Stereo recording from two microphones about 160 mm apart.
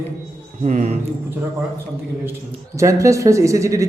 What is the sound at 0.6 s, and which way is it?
Speech, 45° right (ahead or behind).